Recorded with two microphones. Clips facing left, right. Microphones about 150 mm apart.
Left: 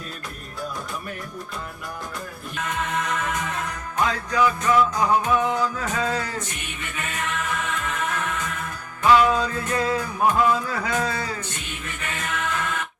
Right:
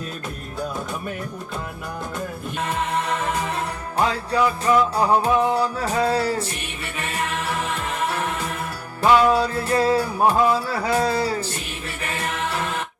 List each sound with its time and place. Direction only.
2.6 s music: 30° right (ahead or behind)